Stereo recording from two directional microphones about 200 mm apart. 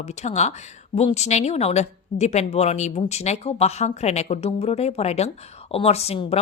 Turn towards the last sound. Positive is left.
turn(degrees=30)  # may be behind; listen again after turning